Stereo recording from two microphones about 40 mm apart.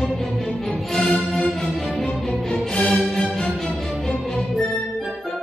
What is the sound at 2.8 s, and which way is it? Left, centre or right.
Music, centre.